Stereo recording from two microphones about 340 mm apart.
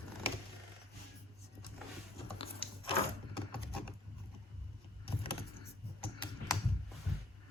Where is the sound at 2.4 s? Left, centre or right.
Centre.